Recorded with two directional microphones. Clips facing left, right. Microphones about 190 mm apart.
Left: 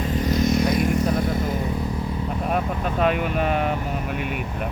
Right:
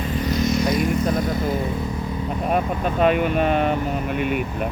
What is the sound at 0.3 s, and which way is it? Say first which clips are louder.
Vehicle: even; 50° left (ahead or behind).